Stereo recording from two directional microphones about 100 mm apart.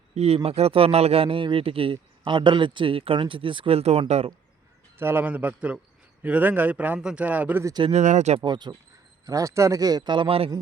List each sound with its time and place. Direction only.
0.1 s a man's voice: 90° right
4.9 s speech: 20° right (ahead or behind)
8.4 s speech: 45° right (ahead or behind)
9.2 s a man's voice: 35° right (ahead or behind); by 10.5 s 70° right (ahead or behind)